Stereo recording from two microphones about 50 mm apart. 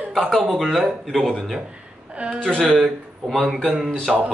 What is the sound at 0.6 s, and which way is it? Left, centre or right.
A man's voice, centre.